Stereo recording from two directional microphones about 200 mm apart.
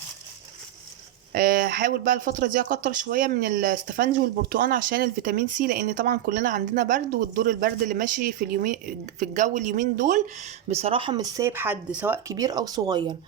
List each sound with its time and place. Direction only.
1.3 s speech: 45° right (ahead or behind); by 13.1 s 20° right (ahead or behind)